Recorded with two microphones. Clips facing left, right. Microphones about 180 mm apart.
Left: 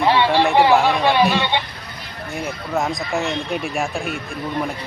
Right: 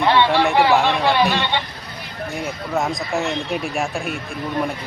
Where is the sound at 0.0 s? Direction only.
15° left (ahead or behind).